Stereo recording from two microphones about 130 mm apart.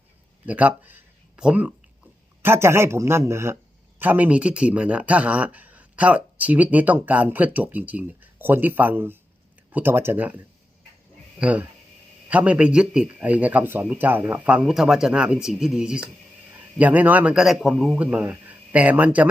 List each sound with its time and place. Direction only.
0.4 s speech: 10° right (ahead or behind)
17.9 s speech: 10° right (ahead or behind)